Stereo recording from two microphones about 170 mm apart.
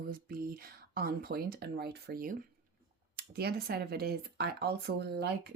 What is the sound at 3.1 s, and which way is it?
Speech, 70° right (ahead or behind).